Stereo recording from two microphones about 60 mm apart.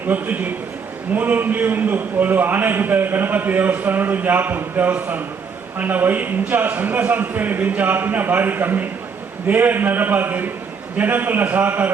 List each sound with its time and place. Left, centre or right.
0.1 s a man's voice: right